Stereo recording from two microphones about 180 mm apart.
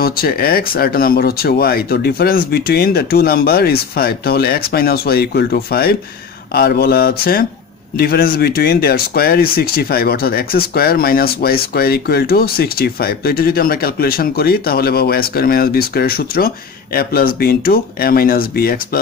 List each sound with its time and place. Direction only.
0.0 s speech: 55° left (ahead or behind)